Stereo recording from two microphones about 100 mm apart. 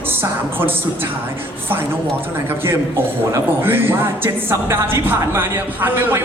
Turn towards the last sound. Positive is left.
turn(degrees=-20)  # may be behind; listen again after turning